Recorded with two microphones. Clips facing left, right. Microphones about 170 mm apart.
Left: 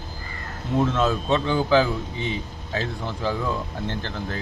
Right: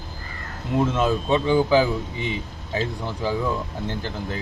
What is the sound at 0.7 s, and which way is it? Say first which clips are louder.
Speech: right 1 dB; 15° right (ahead or behind).